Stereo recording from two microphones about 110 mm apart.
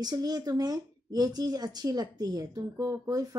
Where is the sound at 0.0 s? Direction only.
35° right (ahead or behind).